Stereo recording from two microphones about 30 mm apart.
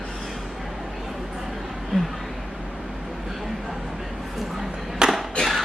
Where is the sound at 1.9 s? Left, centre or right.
Centre.